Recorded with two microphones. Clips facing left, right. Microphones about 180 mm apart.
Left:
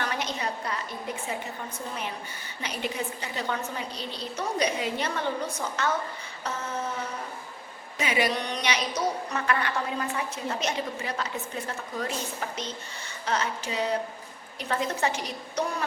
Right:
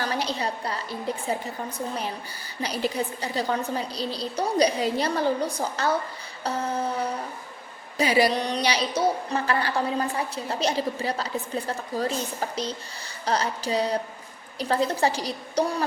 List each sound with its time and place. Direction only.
0.0 s a woman's voice: 35° right (ahead or behind)
2.6 s a woman's voice: 35° right (ahead or behind)